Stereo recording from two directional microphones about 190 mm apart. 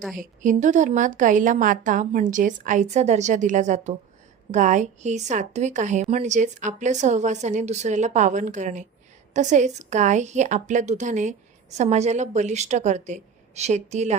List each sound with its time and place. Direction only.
0.2 s a woman's voice: 40° right (ahead or behind)